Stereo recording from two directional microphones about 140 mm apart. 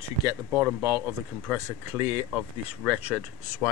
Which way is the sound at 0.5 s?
10° right (ahead or behind).